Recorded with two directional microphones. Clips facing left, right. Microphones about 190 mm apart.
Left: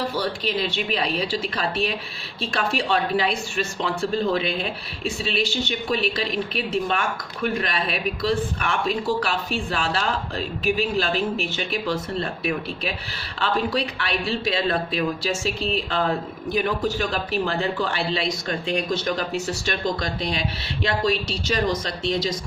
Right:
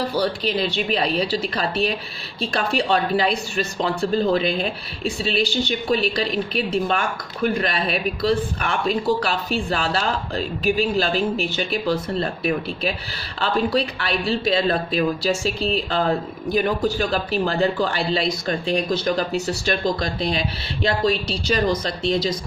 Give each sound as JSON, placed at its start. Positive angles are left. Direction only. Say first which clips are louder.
{"t": 0.2, "sound": "speech", "louder": "right 3 dB", "side_deg": -35}